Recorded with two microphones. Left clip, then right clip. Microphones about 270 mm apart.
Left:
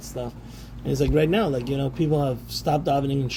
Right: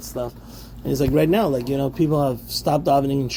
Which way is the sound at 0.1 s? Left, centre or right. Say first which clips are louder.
Right 5 dB; right.